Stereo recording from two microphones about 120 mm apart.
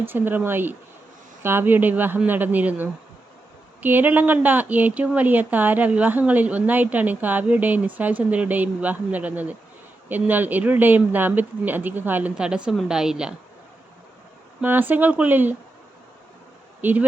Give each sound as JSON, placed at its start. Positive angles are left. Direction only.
{"t": 0.0, "sound": "speech", "side_deg": -15}
{"t": 14.6, "sound": "speech", "side_deg": -15}
{"t": 16.8, "sound": "speech", "side_deg": -15}